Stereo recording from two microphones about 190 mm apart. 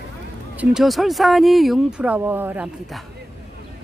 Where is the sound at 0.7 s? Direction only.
Centre (ahead or behind).